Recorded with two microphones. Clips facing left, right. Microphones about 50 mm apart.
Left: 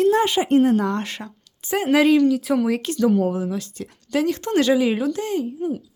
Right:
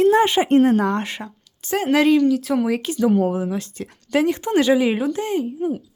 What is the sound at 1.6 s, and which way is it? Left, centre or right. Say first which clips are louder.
A woman's voice: even; centre.